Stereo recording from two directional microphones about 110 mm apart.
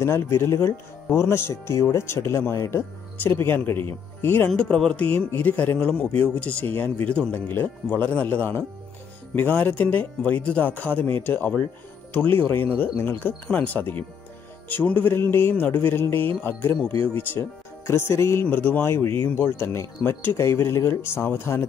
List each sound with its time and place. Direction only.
0.0 s speech: 25° left (ahead or behind)
4.5 s speech: 10° left (ahead or behind)